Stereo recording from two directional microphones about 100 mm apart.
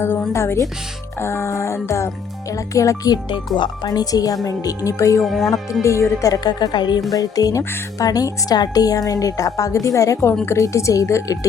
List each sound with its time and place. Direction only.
0.0 s music: 20° left (ahead or behind)
2.5 s a woman's voice: 35° left (ahead or behind)
3.2 s a woman's voice: 55° left (ahead or behind); by 5.2 s 35° left (ahead or behind)
5.2 s speech: centre (ahead or behind)
5.8 s a woman's voice: 30° left (ahead or behind)